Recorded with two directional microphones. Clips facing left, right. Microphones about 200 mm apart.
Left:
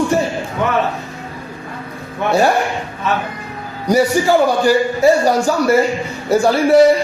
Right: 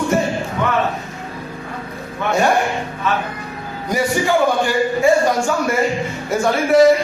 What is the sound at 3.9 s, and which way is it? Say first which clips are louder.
A man's voice: left 5 dB; 40° left (ahead or behind).